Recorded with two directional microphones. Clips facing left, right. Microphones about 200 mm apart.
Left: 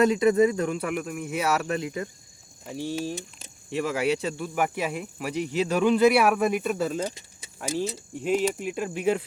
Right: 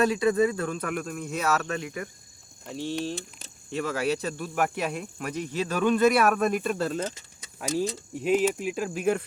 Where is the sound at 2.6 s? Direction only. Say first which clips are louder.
Left 1 dB; 10° left (ahead or behind).